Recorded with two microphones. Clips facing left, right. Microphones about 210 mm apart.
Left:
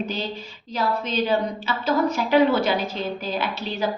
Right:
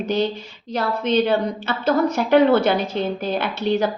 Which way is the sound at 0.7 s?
70° right (ahead or behind).